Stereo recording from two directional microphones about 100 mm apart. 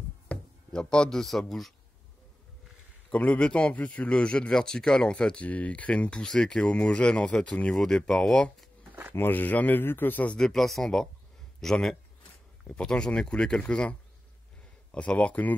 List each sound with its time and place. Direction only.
0.3 s speech: 10° left (ahead or behind)
3.1 s a man's voice: 10° left (ahead or behind)
9.1 s a man's voice: 20° left (ahead or behind)